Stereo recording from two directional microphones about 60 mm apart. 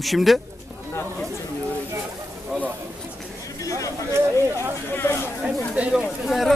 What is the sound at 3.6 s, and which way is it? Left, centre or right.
Chatter, left.